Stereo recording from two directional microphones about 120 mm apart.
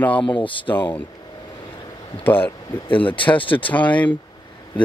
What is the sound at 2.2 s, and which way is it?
Speech, 15° left (ahead or behind).